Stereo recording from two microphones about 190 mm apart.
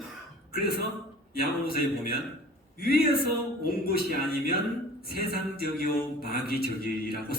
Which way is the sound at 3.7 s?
55° left (ahead or behind).